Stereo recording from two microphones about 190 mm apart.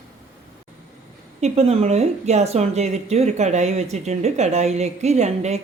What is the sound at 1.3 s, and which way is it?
A woman's voice, 35° right (ahead or behind).